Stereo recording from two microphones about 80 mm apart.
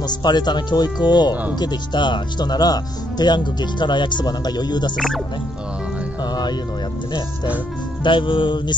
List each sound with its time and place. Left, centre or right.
0.0 s speech: left
4.9 s speech: centre
6.2 s music: left
8.0 s music: left